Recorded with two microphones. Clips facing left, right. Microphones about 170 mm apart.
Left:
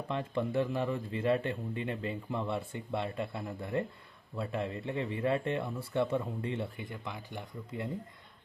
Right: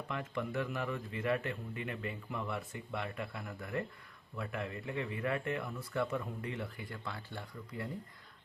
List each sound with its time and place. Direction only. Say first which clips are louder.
0.1 s speech: left 6 dB; 30° left (ahead or behind)